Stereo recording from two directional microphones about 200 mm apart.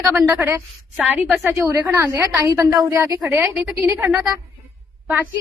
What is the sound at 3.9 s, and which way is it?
Speech, 15° right (ahead or behind).